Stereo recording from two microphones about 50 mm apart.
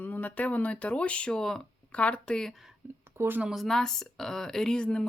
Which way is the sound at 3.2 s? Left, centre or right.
Right.